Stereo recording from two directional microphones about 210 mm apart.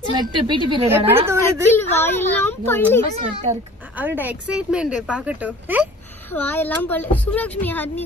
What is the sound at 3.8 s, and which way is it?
A woman's voice, 10° right (ahead or behind).